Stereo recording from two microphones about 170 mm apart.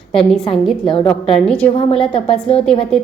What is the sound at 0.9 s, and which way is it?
Speech, 30° left (ahead or behind).